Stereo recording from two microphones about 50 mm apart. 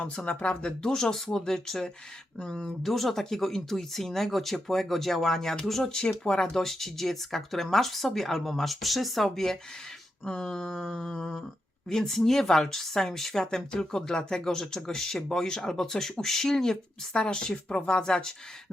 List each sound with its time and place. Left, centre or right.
0.3 s speech: left
10.7 s speech: centre
10.9 s speech: centre